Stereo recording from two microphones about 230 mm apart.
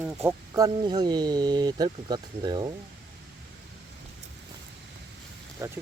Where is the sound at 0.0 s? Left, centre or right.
Centre.